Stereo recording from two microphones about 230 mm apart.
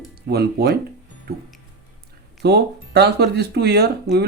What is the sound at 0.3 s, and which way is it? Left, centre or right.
Speech, right.